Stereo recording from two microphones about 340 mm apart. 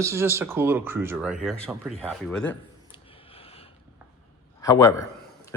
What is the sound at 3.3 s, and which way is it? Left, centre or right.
Boat, centre.